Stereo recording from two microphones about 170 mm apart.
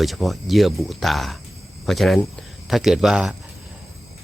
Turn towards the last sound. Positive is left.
turn(degrees=-5)  # may be behind; listen again after turning